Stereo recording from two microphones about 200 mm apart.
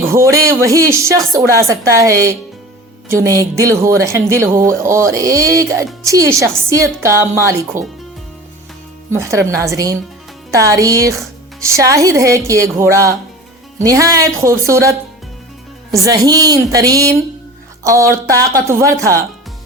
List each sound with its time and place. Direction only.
0.0 s speech: 15° right (ahead or behind)
9.1 s speech: 15° right (ahead or behind)